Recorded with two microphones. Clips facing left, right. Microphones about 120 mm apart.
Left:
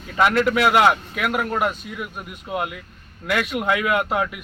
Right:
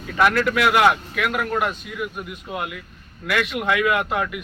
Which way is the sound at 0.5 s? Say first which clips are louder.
Even; 30° left (ahead or behind).